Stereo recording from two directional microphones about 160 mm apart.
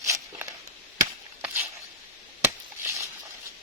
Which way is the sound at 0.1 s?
20° right (ahead or behind).